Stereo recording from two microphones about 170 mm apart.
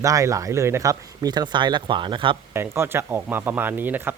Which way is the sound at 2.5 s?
15° right (ahead or behind).